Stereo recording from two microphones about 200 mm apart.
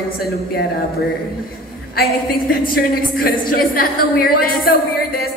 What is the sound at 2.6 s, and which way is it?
A woman's voice, 45° left (ahead or behind).